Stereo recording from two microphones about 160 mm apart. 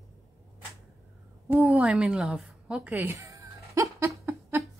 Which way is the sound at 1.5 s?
10° right (ahead or behind).